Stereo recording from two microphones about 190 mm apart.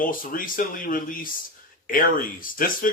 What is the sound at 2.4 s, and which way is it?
Speech, 45° left (ahead or behind).